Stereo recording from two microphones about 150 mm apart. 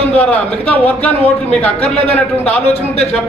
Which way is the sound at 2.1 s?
10° left (ahead or behind).